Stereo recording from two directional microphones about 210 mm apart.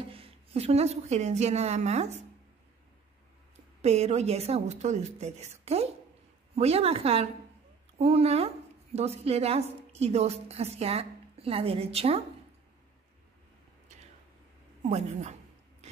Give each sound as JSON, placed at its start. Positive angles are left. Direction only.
{"t": 0.1, "sound": "a woman's voice", "side_deg": -25}
{"t": 3.8, "sound": "a woman's voice", "side_deg": -30}
{"t": 14.8, "sound": "speech", "side_deg": -30}